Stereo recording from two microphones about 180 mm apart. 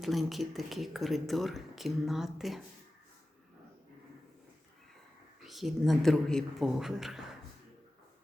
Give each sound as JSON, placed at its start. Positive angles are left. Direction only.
{"t": 0.0, "sound": "speech", "side_deg": 0}
{"t": 5.4, "sound": "speech", "side_deg": 0}